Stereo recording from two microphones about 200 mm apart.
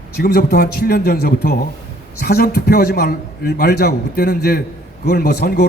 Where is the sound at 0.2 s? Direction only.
50° left (ahead or behind).